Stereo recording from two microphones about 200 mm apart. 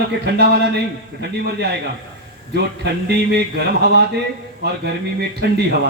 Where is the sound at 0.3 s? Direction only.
55° right (ahead or behind).